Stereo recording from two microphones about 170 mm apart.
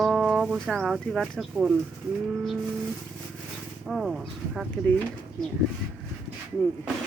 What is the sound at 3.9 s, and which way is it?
Speech, centre (ahead or behind).